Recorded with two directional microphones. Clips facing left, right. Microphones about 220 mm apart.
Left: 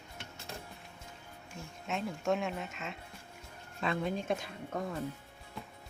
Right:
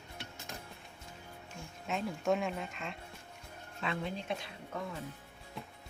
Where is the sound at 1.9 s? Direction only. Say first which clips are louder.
Even; centre (ahead or behind).